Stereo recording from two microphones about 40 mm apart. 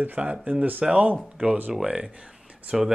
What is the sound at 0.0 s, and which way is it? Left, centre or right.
Speech, right.